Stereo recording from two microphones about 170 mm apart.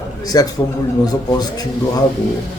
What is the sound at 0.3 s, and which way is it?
A man's voice, 20° left (ahead or behind).